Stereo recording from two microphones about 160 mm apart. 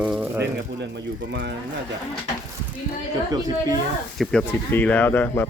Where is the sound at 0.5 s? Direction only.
90° right.